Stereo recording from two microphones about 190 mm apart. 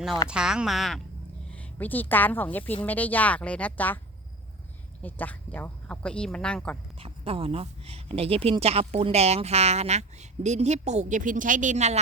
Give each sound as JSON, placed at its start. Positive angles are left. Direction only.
{"t": 0.3, "sound": "a woman's voice", "side_deg": -5}
{"t": 5.0, "sound": "speech", "side_deg": 10}
{"t": 7.0, "sound": "speech", "side_deg": -30}